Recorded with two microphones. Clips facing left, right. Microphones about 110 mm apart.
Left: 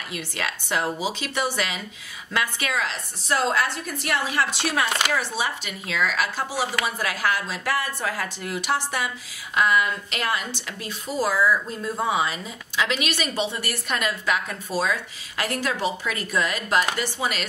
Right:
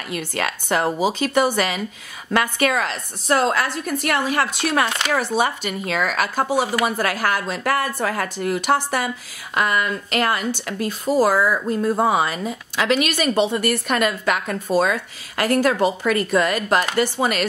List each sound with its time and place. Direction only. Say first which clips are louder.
0.1 s speech: right 6 dB; 50° right (ahead or behind)